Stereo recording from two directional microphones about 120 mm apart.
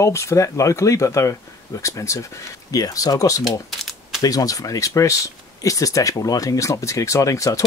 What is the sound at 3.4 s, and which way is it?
Typing, centre (ahead or behind).